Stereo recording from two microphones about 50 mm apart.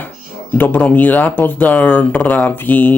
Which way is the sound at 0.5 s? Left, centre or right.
Left.